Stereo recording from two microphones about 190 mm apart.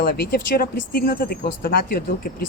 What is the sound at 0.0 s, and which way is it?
Speech, 55° left (ahead or behind).